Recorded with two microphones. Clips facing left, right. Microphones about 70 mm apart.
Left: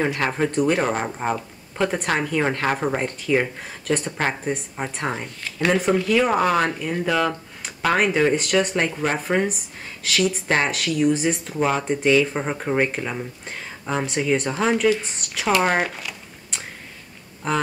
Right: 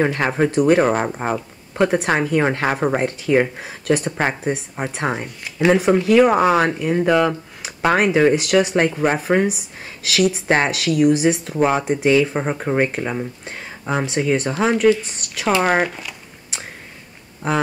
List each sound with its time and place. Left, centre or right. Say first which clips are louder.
0.2 s speech: right 4 dB; centre
11.5 s speech: right 4 dB; centre
15.6 s a sound: right 3 dB; centre